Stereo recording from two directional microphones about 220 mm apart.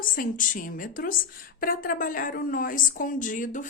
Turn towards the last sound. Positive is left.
turn(degrees=35)  # may be behind; listen again after turning